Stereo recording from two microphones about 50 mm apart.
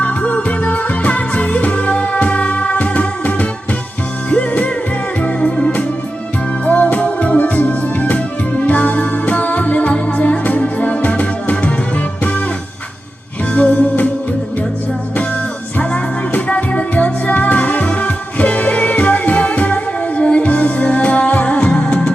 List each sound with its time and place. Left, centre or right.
0.0 s music: left
5.2 s music: left
13.5 s music: left
15.8 s music: left